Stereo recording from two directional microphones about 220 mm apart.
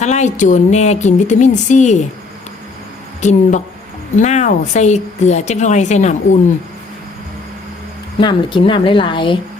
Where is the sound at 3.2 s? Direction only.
30° left (ahead or behind).